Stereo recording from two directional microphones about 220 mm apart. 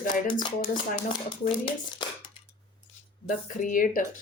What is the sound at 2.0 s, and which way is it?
Dishes, 20° left (ahead or behind).